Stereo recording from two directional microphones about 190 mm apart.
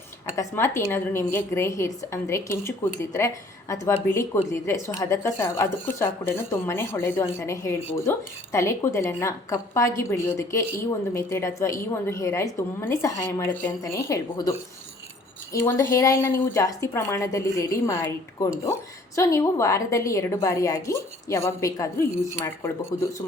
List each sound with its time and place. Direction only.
0.3 s a woman's voice: 15° left (ahead or behind)
15.5 s a woman's voice: 15° left (ahead or behind)